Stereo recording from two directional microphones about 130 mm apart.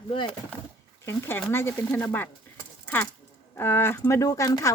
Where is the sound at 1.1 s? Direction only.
15° left (ahead or behind).